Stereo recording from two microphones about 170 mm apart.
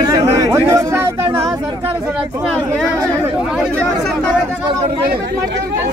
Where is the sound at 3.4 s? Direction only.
5° right (ahead or behind).